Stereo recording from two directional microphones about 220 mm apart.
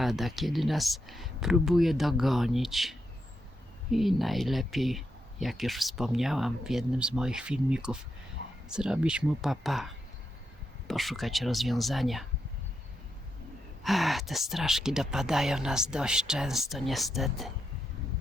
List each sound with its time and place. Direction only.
0.0 s speech: centre (ahead or behind)
3.9 s speech: centre (ahead or behind)
8.4 s a sound: 60° right (ahead or behind)
8.7 s speech: 5° right (ahead or behind)
13.8 s speech: centre (ahead or behind)